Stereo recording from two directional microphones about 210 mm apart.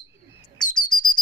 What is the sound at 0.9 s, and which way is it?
Bird, 20° left (ahead or behind).